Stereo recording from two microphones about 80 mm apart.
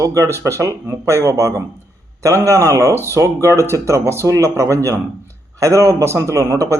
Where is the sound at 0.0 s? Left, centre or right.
Right.